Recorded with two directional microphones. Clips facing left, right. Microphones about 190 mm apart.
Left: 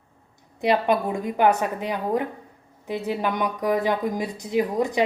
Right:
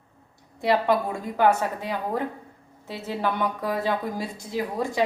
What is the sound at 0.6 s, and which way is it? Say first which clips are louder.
A woman's voice: left 1 dB; 20° left (ahead or behind).